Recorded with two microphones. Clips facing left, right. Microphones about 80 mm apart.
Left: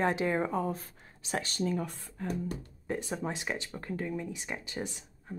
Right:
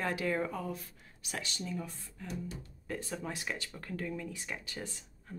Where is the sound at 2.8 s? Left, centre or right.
Left.